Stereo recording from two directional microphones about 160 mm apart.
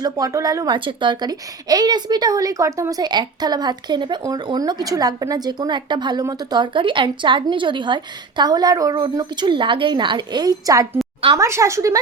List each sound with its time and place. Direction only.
0.0 s a woman's voice: 20° right (ahead or behind)